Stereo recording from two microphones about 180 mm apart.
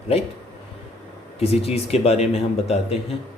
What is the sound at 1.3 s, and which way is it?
Speech, 35° left (ahead or behind).